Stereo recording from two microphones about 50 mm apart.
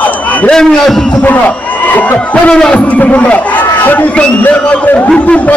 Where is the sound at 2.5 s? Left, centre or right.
Centre.